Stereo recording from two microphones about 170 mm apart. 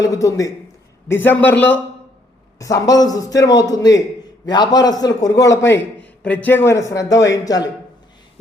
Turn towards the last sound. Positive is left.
turn(degrees=20)  # may be behind; listen again after turning